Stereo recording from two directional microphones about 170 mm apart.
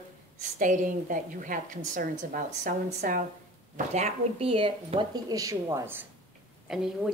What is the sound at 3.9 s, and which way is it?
Speech, 35° right (ahead or behind).